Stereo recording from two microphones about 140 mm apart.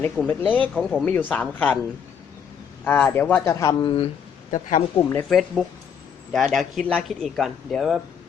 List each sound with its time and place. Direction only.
0.0 s speech: 10° left (ahead or behind)
0.7 s speech: centre (ahead or behind)
2.8 s speech: 15° left (ahead or behind)
3.5 s speech: 25° left (ahead or behind)
5.3 s speech: centre (ahead or behind)